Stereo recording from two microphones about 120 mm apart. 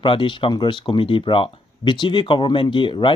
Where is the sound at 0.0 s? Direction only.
45° left (ahead or behind).